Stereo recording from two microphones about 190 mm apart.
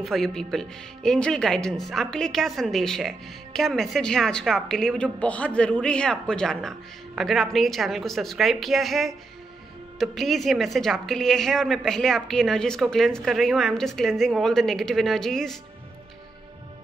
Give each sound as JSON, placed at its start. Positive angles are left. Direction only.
{"t": 0.0, "sound": "speech", "side_deg": 0}